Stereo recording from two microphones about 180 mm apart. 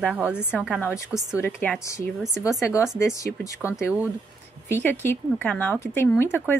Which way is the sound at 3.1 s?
15° left (ahead or behind).